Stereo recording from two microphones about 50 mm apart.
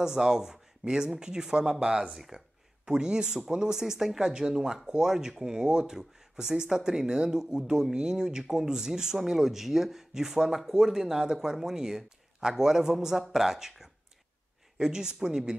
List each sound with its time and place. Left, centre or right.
0.0 s speech: centre